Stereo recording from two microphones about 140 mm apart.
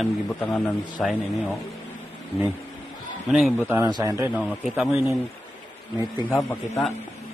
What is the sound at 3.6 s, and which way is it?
Speech, 15° right (ahead or behind).